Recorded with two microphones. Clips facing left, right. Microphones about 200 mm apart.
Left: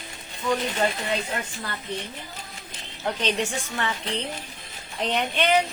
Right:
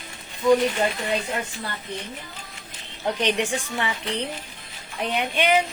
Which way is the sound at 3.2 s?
15° right (ahead or behind).